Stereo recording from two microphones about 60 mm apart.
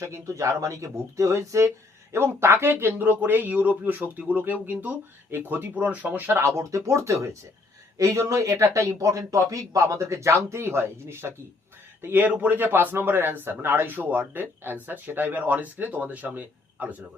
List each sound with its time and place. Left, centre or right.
0.0 s speech: right
6.3 s speech: right
12.0 s speech: right